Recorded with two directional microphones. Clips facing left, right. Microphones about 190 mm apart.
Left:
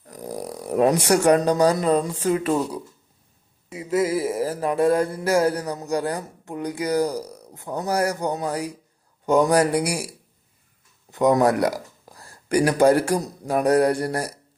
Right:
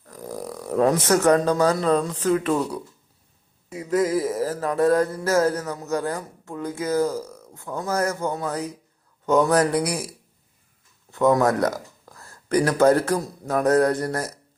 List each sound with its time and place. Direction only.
0.1 s speech: 15° left (ahead or behind)
3.7 s mantra: 5° left (ahead or behind)
11.1 s speech: 20° left (ahead or behind)